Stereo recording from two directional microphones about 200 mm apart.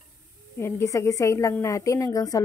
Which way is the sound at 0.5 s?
15° left (ahead or behind).